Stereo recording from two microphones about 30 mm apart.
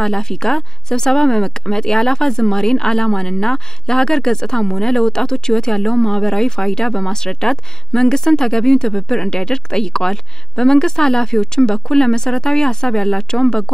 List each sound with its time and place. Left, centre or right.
0.0 s speech: left